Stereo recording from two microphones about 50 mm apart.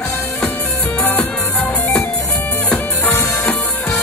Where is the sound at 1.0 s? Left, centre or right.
Left.